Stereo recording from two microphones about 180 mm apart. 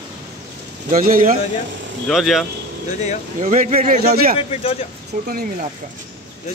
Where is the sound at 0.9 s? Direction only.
50° right (ahead or behind).